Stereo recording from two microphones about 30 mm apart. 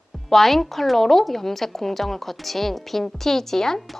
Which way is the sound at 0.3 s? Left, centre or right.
Centre.